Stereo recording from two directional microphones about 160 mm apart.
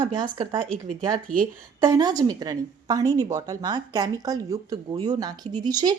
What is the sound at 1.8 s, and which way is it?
A woman's voice, 25° right (ahead or behind).